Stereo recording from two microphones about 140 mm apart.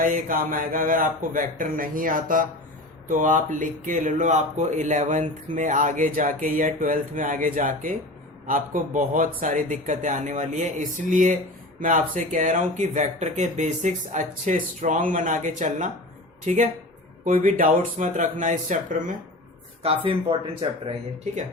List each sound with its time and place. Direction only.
0.0 s speech: 75° right (ahead or behind); by 16.6 s 60° right (ahead or behind)
17.2 s speech: 75° right (ahead or behind)
19.8 s speech: 45° right (ahead or behind)